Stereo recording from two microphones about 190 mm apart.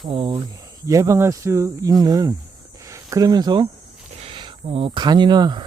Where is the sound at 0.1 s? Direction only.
25° right (ahead or behind).